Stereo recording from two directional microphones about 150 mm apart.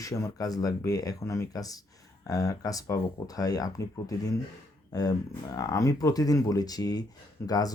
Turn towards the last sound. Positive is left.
turn(degrees=25)  # may be behind; listen again after turning